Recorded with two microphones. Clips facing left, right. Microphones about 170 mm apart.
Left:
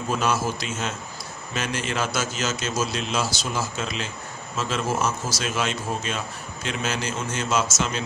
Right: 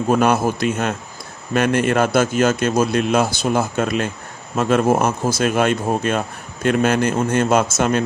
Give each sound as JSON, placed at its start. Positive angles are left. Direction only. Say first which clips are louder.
{"t": 0.1, "sound": "speech", "louder": "right 8 dB", "side_deg": -55}